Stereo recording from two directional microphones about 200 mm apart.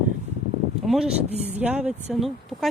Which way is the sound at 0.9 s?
5° right (ahead or behind).